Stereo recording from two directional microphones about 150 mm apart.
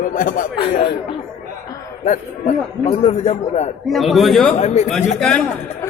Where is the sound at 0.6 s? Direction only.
35° left (ahead or behind).